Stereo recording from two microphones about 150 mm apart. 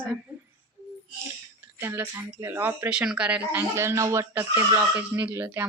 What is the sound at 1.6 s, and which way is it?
Speech, 15° right (ahead or behind).